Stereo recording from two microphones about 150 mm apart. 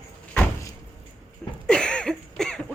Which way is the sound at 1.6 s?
5° left (ahead or behind).